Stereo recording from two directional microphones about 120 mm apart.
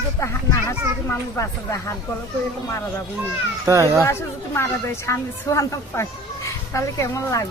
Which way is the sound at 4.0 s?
20° left (ahead or behind).